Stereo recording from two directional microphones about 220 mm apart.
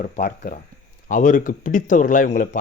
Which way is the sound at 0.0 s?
40° left (ahead or behind).